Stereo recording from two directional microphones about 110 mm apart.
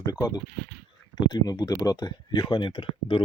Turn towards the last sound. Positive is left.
turn(degrees=50)  # may be behind; listen again after turning